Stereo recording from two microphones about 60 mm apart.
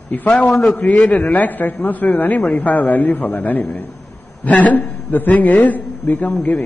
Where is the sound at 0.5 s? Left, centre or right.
Centre.